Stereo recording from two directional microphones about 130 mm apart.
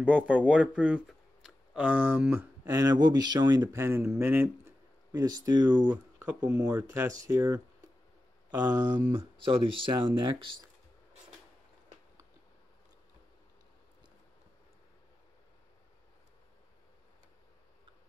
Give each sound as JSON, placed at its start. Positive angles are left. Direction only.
{"t": 0.0, "sound": "speech", "side_deg": -10}
{"t": 2.6, "sound": "speech", "side_deg": -30}
{"t": 3.7, "sound": "speech", "side_deg": -20}
{"t": 5.1, "sound": "speech", "side_deg": -30}
{"t": 5.9, "sound": "speech", "side_deg": -15}